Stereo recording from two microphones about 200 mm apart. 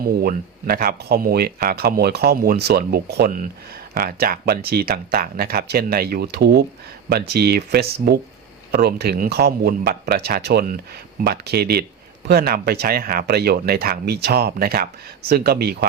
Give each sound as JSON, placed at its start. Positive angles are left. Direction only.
{"t": 0.0, "sound": "speech", "side_deg": -50}